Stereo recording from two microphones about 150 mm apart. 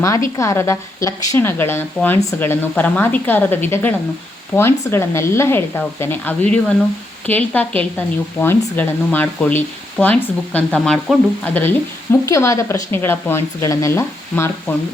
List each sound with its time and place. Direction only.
0.3 s speech: 20° left (ahead or behind)